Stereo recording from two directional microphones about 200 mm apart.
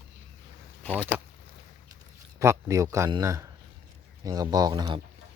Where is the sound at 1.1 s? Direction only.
5° right (ahead or behind).